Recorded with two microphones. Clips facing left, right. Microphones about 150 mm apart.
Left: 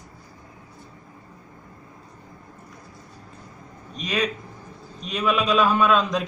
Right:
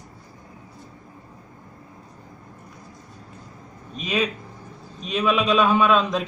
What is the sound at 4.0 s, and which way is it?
A man's voice, 5° right (ahead or behind).